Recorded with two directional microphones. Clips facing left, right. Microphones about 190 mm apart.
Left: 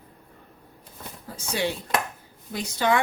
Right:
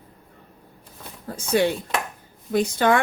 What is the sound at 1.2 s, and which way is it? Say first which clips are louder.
A woman's voice: right 7 dB; 50° right (ahead or behind).